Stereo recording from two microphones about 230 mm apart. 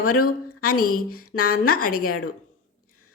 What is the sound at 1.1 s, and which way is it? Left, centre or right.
A woman's voice, left.